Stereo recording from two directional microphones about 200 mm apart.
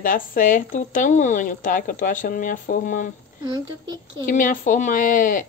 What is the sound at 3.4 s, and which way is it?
Speech, 20° right (ahead or behind).